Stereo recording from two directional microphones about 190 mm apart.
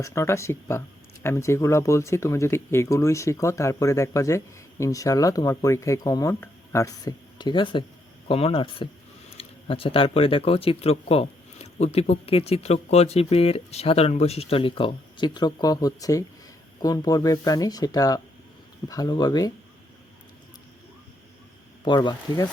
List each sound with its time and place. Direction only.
0.0 s speech: 15° left (ahead or behind)
21.8 s speech: 25° left (ahead or behind)